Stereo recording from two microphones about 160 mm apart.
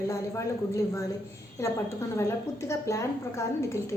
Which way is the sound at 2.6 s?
20° left (ahead or behind).